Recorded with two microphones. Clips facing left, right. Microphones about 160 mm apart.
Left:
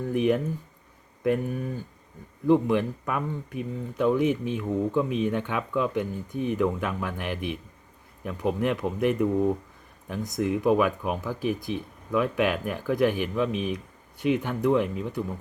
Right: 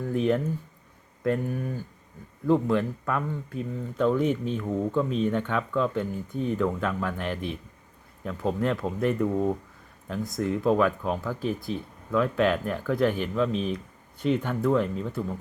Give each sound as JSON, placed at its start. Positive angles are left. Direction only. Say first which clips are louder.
{"t": 0.1, "sound": "speech", "louder": "left 1 dB", "side_deg": 15}